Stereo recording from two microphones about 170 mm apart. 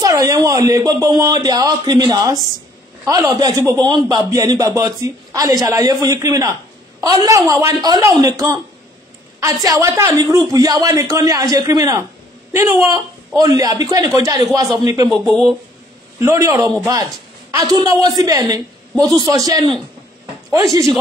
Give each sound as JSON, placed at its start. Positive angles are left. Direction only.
{"t": 0.0, "sound": "a man's voice", "side_deg": -20}
{"t": 16.2, "sound": "a man's voice", "side_deg": -15}